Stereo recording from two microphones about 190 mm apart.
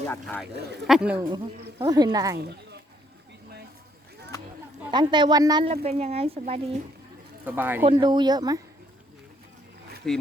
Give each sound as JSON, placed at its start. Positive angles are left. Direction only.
{"t": 0.0, "sound": "speech", "side_deg": 10}
{"t": 0.4, "sound": "speech", "side_deg": -60}
{"t": 0.9, "sound": "speech", "side_deg": -5}
{"t": 1.8, "sound": "a woman's voice", "side_deg": -20}
{"t": 2.4, "sound": "speech", "side_deg": -60}
{"t": 4.9, "sound": "a woman's voice", "side_deg": -25}
{"t": 5.8, "sound": "speech", "side_deg": -35}
{"t": 7.4, "sound": "speech", "side_deg": -10}
{"t": 7.9, "sound": "a woman's voice", "side_deg": -25}
{"t": 10.0, "sound": "speech", "side_deg": 5}